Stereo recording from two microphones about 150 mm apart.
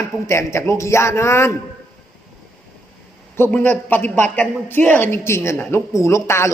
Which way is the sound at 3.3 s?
15° left (ahead or behind).